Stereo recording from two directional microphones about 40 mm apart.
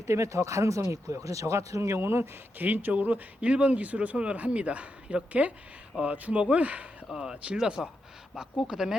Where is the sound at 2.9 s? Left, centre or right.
Right.